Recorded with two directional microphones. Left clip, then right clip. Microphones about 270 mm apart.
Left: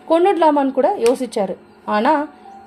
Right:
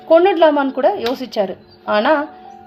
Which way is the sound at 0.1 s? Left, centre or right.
Left.